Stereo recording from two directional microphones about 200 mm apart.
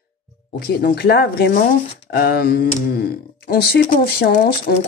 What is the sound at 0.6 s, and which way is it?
Speech, 50° left (ahead or behind).